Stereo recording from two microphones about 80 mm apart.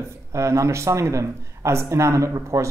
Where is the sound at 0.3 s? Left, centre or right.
Right.